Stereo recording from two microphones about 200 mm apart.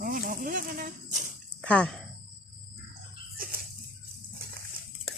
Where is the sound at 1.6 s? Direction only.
5° left (ahead or behind).